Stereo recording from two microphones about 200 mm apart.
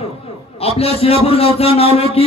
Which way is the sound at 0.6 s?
30° left (ahead or behind).